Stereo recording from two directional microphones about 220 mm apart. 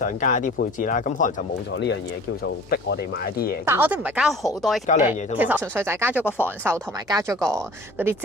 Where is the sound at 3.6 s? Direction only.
10° right (ahead or behind).